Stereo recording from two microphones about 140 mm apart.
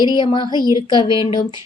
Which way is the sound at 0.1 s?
35° left (ahead or behind).